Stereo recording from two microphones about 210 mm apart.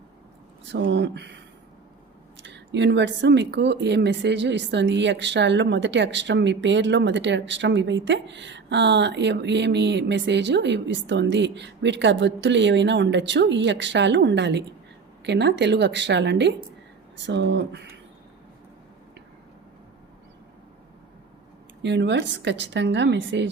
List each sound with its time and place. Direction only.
0.7 s speech: 60° right (ahead or behind)
2.4 s speech: 55° right (ahead or behind)
21.8 s speech: 55° right (ahead or behind)